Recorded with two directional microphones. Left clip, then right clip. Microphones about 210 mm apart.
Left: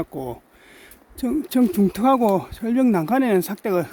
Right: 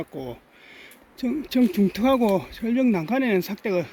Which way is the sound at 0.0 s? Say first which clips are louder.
Left 4 dB; 30° left (ahead or behind).